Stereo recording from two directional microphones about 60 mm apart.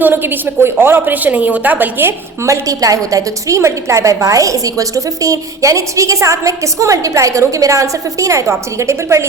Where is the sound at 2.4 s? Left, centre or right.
Right.